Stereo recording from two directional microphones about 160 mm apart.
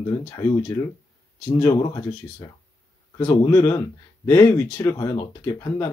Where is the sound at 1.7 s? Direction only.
25° left (ahead or behind).